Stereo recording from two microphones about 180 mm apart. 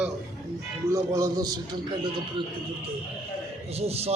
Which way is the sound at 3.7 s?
35° right (ahead or behind).